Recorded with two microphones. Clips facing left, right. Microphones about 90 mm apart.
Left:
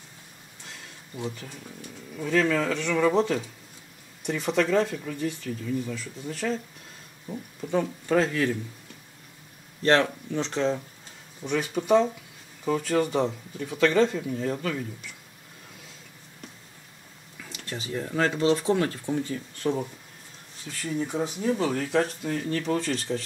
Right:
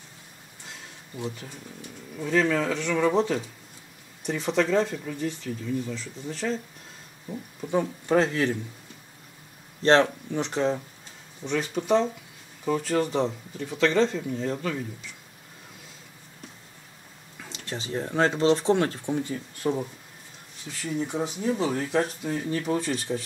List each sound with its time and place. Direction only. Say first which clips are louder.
2.1 s speech: even; 5° right (ahead or behind)
7.6 s speech: even; 15° right (ahead or behind)
9.8 s speech: right 2 dB; 25° right (ahead or behind)
11.4 s speech: left 1 dB; 5° left (ahead or behind)
17.4 s speech: right 1 dB; 25° right (ahead or behind)
20.8 s speech: even; 20° right (ahead or behind)